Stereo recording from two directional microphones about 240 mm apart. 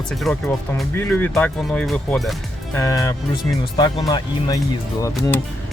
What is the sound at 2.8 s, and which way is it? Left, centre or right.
Speech, centre.